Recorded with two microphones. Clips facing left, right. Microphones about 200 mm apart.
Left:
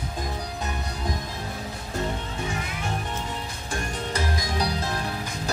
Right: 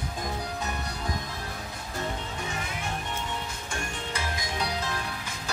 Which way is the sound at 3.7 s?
35° left (ahead or behind).